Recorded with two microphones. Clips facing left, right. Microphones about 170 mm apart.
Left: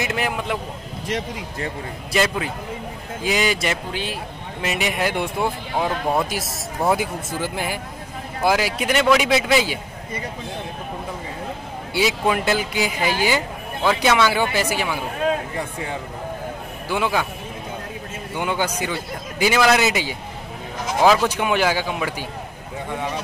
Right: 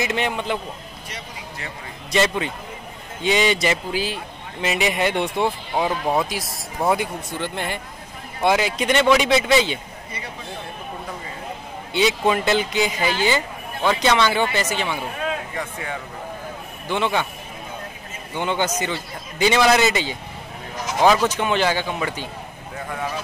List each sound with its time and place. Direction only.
0.0 s speech: centre (ahead or behind)
2.1 s speech: centre (ahead or behind)
11.9 s a man's voice: 5° left (ahead or behind)
16.9 s a man's voice: 5° left (ahead or behind)
18.4 s a man's voice: 10° left (ahead or behind)